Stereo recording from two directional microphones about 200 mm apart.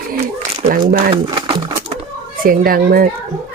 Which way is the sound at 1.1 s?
20° right (ahead or behind).